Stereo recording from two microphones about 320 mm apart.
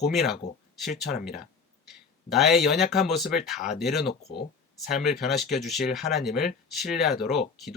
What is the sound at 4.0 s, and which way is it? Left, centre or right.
Speech, left.